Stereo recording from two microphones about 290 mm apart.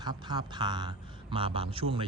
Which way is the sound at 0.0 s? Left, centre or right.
Centre.